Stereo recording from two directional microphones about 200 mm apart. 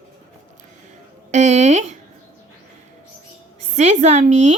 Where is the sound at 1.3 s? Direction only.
35° right (ahead or behind).